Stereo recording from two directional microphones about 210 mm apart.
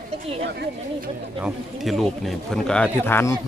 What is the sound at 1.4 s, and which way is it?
Speech, 5° right (ahead or behind).